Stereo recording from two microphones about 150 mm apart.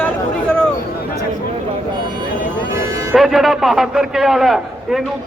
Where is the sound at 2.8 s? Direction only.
20° right (ahead or behind).